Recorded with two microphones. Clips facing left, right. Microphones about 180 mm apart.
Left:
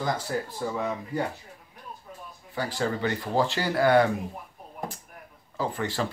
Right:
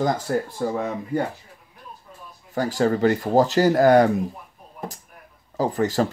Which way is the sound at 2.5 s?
45° right (ahead or behind).